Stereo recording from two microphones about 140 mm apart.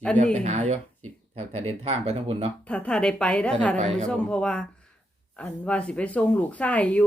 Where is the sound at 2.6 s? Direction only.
10° left (ahead or behind).